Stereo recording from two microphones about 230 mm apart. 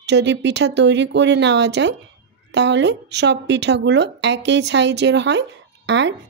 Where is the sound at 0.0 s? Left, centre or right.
Right.